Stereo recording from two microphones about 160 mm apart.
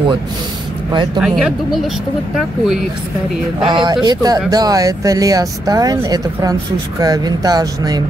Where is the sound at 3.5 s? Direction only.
30° right (ahead or behind).